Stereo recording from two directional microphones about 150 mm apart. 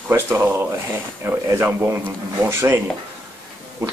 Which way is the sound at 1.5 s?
15° right (ahead or behind).